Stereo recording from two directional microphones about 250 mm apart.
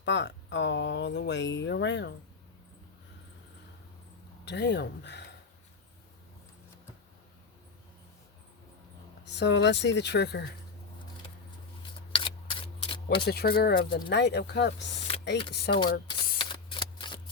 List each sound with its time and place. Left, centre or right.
0.0 s speech: left
4.4 s speech: left
9.2 s speech: left
12.1 s camera: centre
13.2 s speech: left
15.7 s speech: centre
16.4 s shuffling cards: centre